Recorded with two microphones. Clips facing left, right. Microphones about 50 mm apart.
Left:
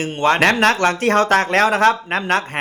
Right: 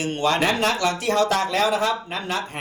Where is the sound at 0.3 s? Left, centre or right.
Left.